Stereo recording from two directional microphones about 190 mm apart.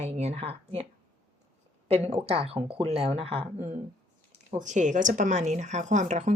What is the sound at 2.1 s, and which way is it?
Speech, 30° right (ahead or behind).